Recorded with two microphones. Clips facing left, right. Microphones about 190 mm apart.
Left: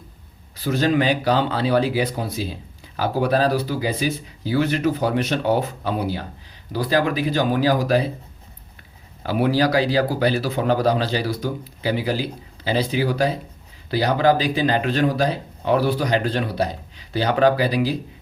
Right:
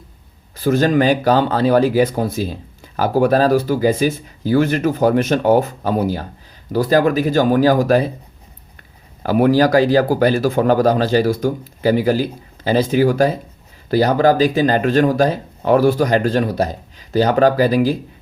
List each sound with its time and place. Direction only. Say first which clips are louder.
0.5 s speech: right 5 dB; 50° right (ahead or behind)
9.2 s speech: right 6 dB; 50° right (ahead or behind)